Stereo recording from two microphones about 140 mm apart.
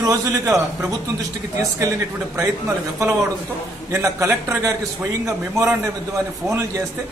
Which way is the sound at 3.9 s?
25° right (ahead or behind).